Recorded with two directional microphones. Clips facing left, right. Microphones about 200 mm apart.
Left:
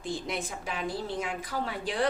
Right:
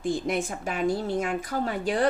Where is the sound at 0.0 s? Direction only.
45° right (ahead or behind).